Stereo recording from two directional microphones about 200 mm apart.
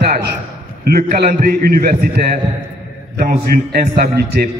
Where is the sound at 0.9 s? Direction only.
50° right (ahead or behind).